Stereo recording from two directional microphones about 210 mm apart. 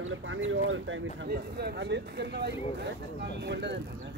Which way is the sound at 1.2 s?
50° right (ahead or behind).